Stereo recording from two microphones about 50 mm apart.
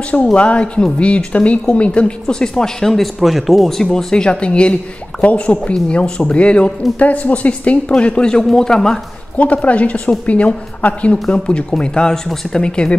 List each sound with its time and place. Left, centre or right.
0.3 s a woman's voice: left
7.9 s speech: centre
9.4 s a woman's voice: left